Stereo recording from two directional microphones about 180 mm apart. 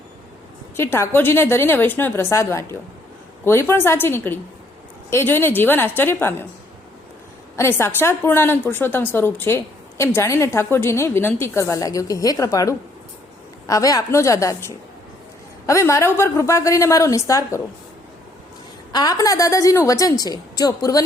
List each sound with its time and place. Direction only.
0.8 s a woman's voice: 15° left (ahead or behind)
7.5 s a woman's voice: 15° left (ahead or behind)
18.9 s a woman's voice: 20° left (ahead or behind)